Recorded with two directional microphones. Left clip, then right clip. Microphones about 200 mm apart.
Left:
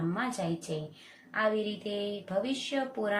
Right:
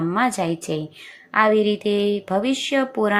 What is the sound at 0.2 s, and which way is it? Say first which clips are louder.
Speech: right 12 dB; 30° right (ahead or behind).